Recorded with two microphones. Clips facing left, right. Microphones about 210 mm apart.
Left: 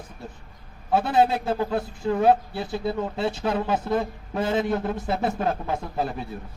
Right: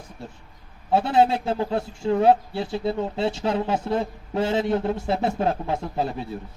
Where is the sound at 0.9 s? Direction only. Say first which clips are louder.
Right 1 dB; 25° right (ahead or behind).